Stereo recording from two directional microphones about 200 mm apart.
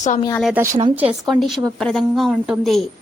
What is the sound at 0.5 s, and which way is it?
Speech, 15° right (ahead or behind).